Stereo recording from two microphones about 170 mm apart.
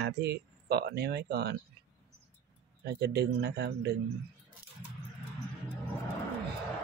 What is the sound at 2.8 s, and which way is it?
Speech, 75° right (ahead or behind).